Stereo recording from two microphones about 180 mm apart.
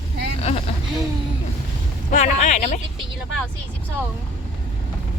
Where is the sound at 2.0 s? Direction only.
40° left (ahead or behind).